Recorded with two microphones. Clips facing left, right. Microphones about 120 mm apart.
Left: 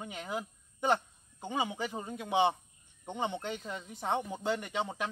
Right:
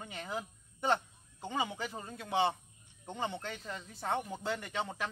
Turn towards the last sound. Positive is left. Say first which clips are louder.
# left 3 dB
turn(degrees=15)  # may be behind; listen again after turning